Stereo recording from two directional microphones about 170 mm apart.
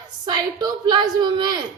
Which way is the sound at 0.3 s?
25° right (ahead or behind).